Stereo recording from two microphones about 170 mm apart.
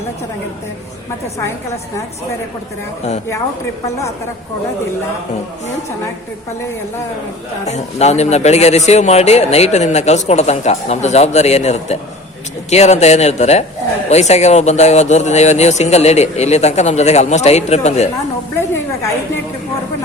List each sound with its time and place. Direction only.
7.6 s a man's voice: 40° left (ahead or behind)